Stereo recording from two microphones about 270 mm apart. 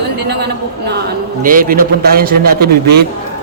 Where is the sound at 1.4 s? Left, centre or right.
Right.